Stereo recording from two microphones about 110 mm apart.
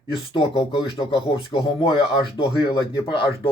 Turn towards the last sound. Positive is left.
turn(degrees=50)  # may be behind; listen again after turning